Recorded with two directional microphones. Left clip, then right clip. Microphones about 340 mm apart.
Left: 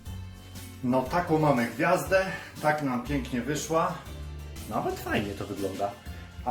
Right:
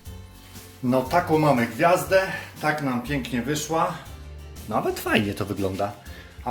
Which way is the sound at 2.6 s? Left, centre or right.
Centre.